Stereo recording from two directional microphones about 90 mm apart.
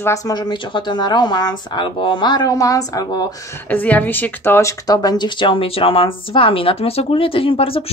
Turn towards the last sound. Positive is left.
turn(degrees=90)